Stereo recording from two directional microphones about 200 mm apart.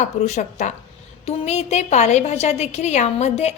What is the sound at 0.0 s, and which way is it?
A woman's voice, 35° left (ahead or behind).